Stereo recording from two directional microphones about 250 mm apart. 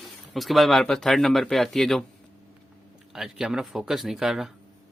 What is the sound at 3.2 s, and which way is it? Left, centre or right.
Speech, centre.